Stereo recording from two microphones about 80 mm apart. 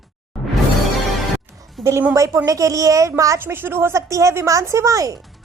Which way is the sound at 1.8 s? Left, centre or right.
Centre.